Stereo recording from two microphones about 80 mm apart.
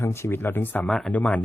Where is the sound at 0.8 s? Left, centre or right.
Centre.